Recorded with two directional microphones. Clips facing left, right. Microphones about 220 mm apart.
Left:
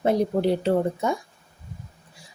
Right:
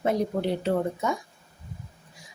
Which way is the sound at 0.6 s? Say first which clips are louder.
Left 3 dB; 30° left (ahead or behind).